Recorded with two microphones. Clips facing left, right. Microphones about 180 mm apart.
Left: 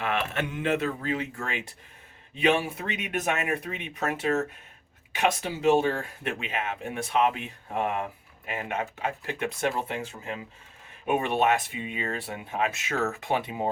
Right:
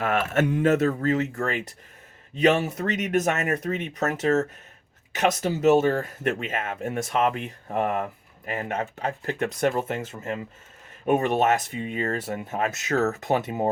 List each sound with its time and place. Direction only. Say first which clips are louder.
0.0 s speech: right 6 dB; 45° right (ahead or behind)